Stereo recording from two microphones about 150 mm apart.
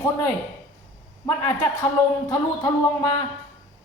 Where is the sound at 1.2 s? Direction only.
15° left (ahead or behind).